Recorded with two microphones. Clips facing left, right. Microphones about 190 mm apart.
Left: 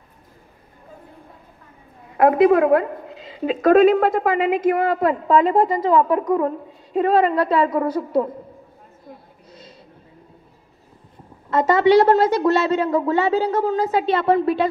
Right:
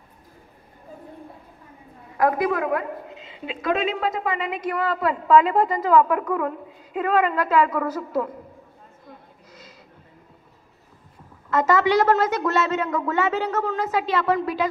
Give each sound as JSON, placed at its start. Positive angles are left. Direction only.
{"t": 2.1, "sound": "a woman's voice", "side_deg": 25}
{"t": 9.5, "sound": "a sound", "side_deg": 30}
{"t": 11.5, "sound": "a woman's voice", "side_deg": 30}